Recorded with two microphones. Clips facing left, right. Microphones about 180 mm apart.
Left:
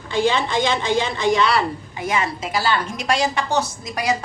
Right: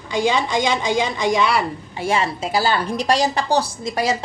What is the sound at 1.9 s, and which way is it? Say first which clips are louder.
A woman's voice: right 3 dB; 30° right (ahead or behind).